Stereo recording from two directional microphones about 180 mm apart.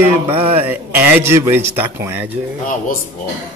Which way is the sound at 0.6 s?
10° right (ahead or behind).